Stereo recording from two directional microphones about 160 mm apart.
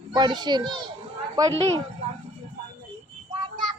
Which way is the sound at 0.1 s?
25° right (ahead or behind).